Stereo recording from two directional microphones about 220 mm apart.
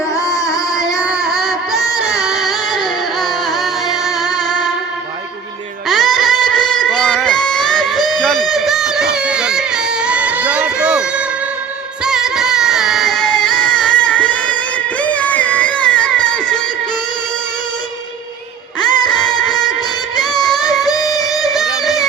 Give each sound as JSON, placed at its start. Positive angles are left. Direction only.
{"t": 0.2, "sound": "music", "side_deg": 15}
{"t": 0.8, "sound": "child singing", "side_deg": 0}
{"t": 2.0, "sound": "music", "side_deg": 0}
{"t": 4.4, "sound": "music", "side_deg": 20}
{"t": 5.9, "sound": "music", "side_deg": 0}
{"t": 9.1, "sound": "a sound", "side_deg": -5}
{"t": 12.0, "sound": "music", "side_deg": 0}
{"t": 18.8, "sound": "music", "side_deg": 20}
{"t": 20.8, "sound": "music", "side_deg": 15}
{"t": 21.5, "sound": "music", "side_deg": 0}